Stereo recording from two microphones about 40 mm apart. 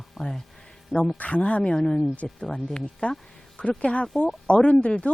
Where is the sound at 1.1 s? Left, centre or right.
Left.